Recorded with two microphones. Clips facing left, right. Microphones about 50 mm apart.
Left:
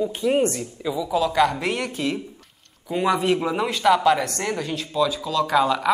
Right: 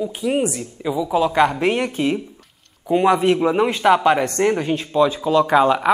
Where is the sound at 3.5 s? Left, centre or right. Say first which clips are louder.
Right 4 dB; right.